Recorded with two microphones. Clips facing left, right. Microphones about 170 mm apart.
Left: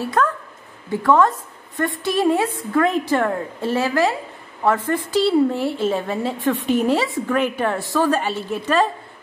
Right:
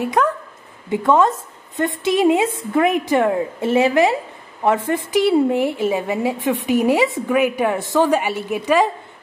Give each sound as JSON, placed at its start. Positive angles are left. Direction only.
{"t": 0.0, "sound": "a woman's voice", "side_deg": -15}